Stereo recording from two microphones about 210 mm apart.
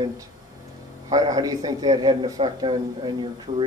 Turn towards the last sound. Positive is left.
turn(degrees=-20)  # may be behind; listen again after turning